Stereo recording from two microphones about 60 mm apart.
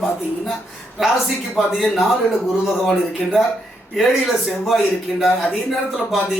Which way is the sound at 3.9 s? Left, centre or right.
Centre.